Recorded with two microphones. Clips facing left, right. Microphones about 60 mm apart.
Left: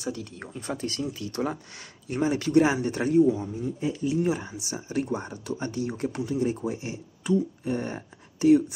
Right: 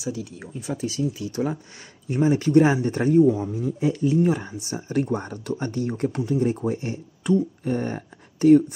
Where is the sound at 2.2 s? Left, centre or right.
Right.